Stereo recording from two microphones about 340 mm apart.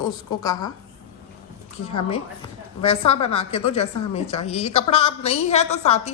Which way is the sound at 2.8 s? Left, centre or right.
Centre.